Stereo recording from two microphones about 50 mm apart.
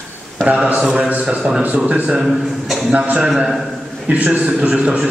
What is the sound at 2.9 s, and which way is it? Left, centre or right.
A man's voice, right.